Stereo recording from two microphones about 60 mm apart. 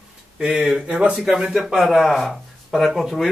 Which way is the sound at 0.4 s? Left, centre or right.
Centre.